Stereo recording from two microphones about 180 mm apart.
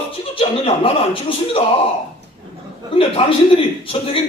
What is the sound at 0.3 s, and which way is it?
Speech, 35° left (ahead or behind).